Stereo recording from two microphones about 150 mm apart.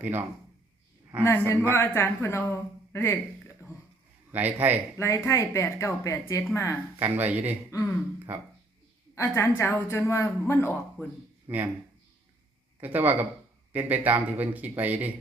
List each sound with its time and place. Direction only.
0.0 s speech: 10° right (ahead or behind)
1.2 s speech: 15° left (ahead or behind)
4.3 s speech: 10° right (ahead or behind)
4.9 s a woman's voice: 20° left (ahead or behind)
7.0 s speech: 10° right (ahead or behind)
7.7 s speech: 20° left (ahead or behind)
9.1 s a woman's voice: 20° left (ahead or behind)
11.4 s speech: 10° right (ahead or behind)
12.8 s speech: 10° right (ahead or behind)